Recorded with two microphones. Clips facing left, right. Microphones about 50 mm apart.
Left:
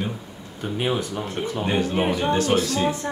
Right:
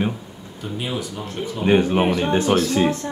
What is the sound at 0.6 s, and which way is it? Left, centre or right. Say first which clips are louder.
Speech: left 3 dB; left.